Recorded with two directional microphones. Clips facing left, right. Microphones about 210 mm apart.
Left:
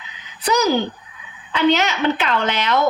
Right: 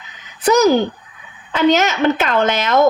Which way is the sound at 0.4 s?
45° right (ahead or behind).